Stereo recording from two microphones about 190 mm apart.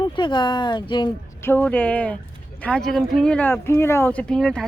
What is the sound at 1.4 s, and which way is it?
Speech, 10° left (ahead or behind).